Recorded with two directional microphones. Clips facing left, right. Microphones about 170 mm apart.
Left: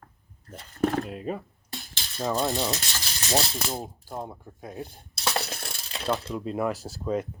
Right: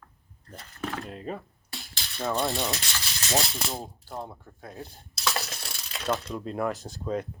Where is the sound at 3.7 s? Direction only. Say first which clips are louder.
Left 2 dB; 10° left (ahead or behind).